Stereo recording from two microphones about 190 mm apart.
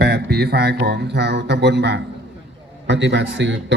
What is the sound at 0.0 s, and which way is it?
A man's voice, 55° right (ahead or behind).